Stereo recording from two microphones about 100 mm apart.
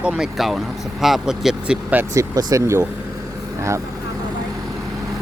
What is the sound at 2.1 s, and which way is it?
Speech, 35° right (ahead or behind).